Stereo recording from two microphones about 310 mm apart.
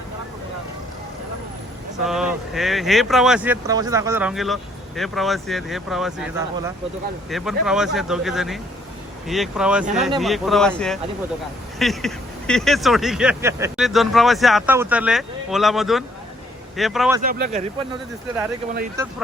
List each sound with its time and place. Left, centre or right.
2.0 s speech: centre
17.2 s speech: right
19.0 s speech: centre